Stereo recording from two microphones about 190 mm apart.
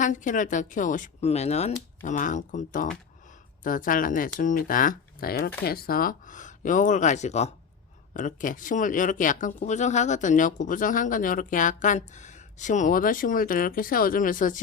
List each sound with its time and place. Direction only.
0.0 s speech: 40° left (ahead or behind)